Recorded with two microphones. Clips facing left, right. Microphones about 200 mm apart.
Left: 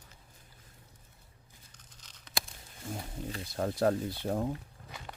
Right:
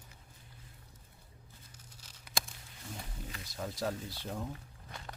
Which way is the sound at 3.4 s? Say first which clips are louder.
Left 8 dB; 55° left (ahead or behind).